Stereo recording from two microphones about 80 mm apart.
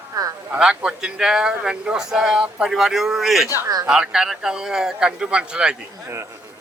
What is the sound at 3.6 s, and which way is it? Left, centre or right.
Speech, right.